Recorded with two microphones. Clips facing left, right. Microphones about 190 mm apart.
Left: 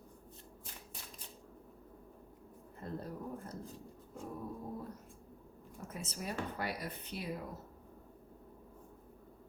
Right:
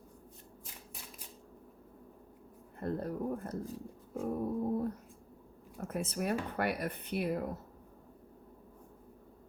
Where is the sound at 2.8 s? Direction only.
60° right (ahead or behind).